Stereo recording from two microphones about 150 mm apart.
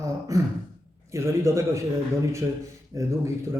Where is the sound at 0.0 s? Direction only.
20° right (ahead or behind).